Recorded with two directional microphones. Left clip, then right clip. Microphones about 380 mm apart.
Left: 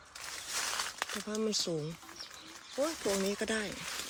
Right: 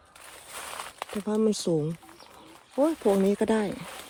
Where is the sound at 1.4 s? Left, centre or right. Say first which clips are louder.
Right 7 dB; centre.